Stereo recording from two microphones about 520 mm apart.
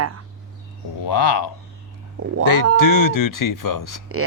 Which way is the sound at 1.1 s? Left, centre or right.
Left.